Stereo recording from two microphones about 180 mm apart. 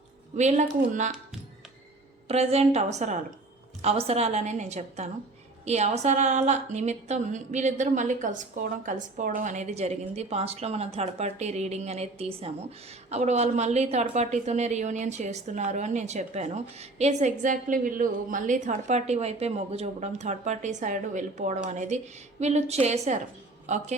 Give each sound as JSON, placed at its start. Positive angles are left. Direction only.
{"t": 0.3, "sound": "speech", "side_deg": -40}
{"t": 2.2, "sound": "a woman's voice", "side_deg": -35}